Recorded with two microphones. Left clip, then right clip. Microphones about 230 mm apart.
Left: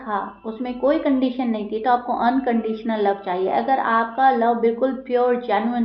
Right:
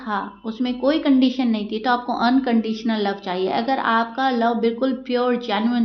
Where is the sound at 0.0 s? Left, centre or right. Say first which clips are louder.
Even; right.